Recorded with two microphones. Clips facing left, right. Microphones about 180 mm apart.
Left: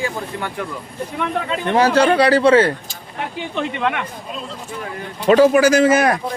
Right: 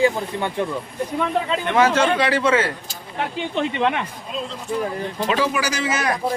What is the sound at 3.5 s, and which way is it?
Speech, 25° right (ahead or behind).